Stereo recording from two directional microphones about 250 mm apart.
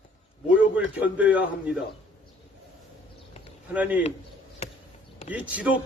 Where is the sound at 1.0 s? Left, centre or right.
Centre.